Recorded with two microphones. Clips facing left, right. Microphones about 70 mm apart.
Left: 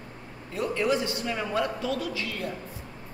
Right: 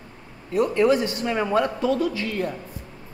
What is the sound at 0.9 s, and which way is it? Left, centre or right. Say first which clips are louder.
A man's voice: right 5 dB; right.